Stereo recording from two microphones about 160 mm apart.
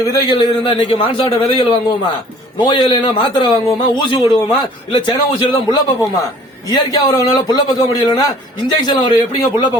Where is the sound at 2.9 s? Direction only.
30° left (ahead or behind).